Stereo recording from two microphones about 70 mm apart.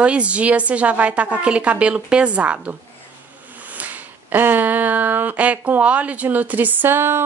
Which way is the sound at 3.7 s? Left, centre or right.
Right.